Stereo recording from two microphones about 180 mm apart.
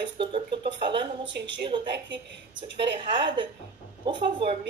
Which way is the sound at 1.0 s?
80° right.